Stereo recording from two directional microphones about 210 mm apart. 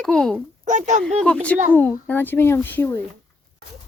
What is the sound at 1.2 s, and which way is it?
A child's voice, 5° left (ahead or behind).